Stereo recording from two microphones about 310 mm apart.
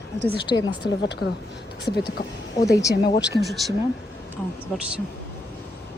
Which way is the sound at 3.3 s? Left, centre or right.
Centre.